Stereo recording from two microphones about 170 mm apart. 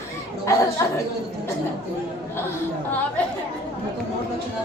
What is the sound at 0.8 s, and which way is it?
Speech, 20° left (ahead or behind).